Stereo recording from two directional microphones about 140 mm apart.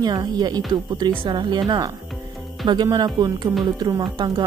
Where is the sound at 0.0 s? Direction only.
30° right (ahead or behind).